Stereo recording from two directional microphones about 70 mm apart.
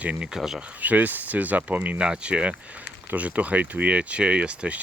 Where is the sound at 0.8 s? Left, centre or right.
Right.